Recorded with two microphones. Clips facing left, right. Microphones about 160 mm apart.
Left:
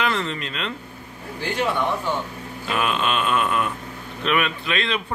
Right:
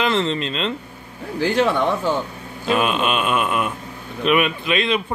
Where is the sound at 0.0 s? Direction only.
25° right (ahead or behind).